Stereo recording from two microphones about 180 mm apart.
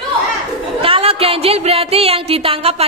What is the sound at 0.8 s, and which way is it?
Speech, 30° right (ahead or behind).